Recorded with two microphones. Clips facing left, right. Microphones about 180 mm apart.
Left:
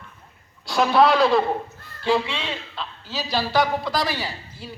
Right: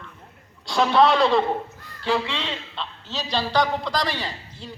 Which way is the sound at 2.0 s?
15° left (ahead or behind).